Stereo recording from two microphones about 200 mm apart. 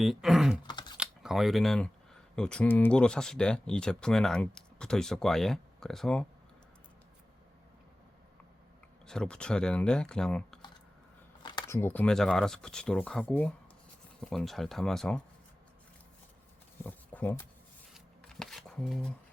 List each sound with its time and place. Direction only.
0.0 s speech: centre (ahead or behind)
0.7 s typing: 20° left (ahead or behind)
0.9 s speech: centre (ahead or behind)
9.0 s speech: 5° left (ahead or behind)
11.4 s a sound: 20° left (ahead or behind)
11.8 s speech: 10° left (ahead or behind)
16.8 s a sound: 10° left (ahead or behind)
17.9 s shuffling cards: 5° left (ahead or behind)